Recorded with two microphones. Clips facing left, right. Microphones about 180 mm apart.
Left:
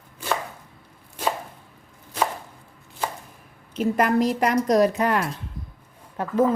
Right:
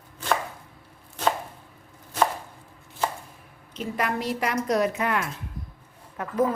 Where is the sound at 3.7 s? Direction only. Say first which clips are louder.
Left 8 dB; 45° left (ahead or behind).